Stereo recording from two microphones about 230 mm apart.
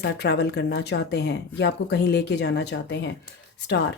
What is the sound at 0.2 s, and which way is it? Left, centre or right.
Speech, left.